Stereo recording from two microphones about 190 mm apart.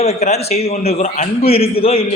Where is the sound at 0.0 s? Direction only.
35° left (ahead or behind).